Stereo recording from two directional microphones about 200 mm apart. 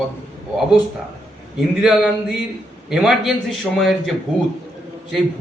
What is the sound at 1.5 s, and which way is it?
A man's voice, 5° right (ahead or behind).